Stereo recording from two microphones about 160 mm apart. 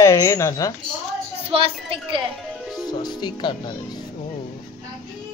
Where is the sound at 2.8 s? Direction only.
25° left (ahead or behind).